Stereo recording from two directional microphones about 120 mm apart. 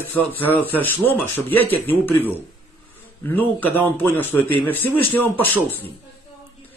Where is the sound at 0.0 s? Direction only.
15° left (ahead or behind).